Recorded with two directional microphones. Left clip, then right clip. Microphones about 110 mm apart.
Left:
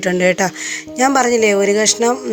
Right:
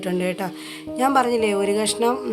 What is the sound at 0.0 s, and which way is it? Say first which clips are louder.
A woman's voice: left 10 dB; 35° left (ahead or behind).